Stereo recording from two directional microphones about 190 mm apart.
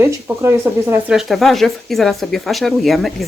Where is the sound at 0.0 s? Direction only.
10° right (ahead or behind).